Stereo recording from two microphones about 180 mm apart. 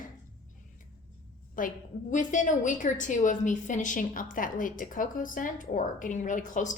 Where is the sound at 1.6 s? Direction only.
50° left (ahead or behind).